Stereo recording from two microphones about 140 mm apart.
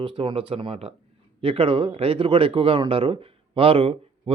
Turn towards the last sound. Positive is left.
turn(degrees=-40)  # may be behind; listen again after turning